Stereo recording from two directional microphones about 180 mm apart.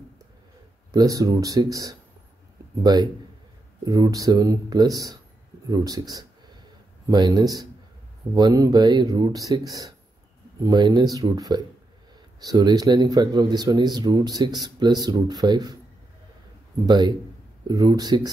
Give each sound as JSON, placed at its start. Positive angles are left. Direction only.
{"t": 0.9, "sound": "speech", "side_deg": -20}
{"t": 16.8, "sound": "speech", "side_deg": -25}